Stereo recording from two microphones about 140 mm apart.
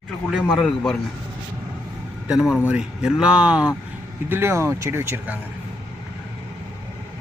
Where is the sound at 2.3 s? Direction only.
5° right (ahead or behind).